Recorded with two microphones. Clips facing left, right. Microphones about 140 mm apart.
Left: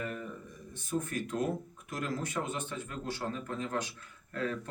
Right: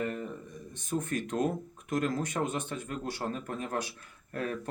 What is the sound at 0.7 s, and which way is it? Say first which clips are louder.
Speech: right 2 dB; 20° right (ahead or behind).